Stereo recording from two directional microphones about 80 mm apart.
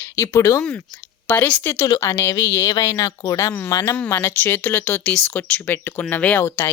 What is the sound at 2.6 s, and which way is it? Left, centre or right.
Speech, left.